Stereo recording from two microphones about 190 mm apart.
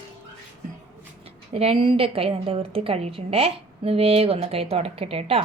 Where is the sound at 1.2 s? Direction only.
30° right (ahead or behind).